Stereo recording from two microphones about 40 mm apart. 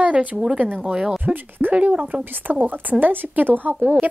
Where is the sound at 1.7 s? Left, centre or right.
Right.